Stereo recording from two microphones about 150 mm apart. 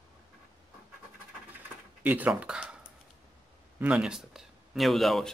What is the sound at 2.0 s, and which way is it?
Speech, 10° right (ahead or behind).